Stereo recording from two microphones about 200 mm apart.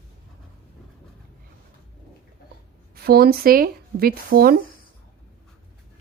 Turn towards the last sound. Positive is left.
turn(degrees=-50)  # may be behind; listen again after turning